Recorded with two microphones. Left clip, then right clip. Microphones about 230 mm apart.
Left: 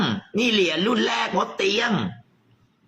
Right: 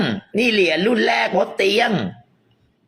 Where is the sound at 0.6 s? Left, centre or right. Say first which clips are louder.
Right 5 dB; right.